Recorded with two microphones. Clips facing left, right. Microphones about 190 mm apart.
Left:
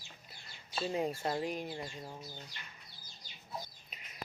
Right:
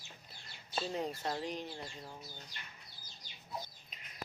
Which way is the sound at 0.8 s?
10° left (ahead or behind).